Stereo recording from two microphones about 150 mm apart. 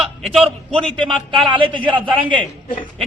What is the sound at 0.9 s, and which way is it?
Speech, 35° right (ahead or behind).